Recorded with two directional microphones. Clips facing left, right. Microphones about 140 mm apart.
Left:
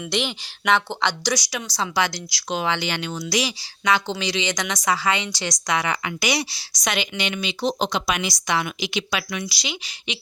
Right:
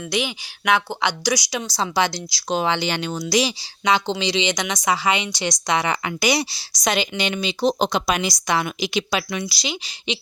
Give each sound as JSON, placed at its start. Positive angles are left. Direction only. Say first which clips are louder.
{"t": 0.1, "sound": "speech", "louder": "right 2 dB", "side_deg": -5}
{"t": 1.5, "sound": "speech", "louder": "right 3 dB", "side_deg": -25}
{"t": 5.4, "sound": "a woman's voice", "louder": "right 3 dB", "side_deg": -30}